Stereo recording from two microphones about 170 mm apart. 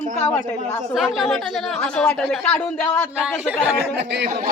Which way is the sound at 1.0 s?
Centre (ahead or behind).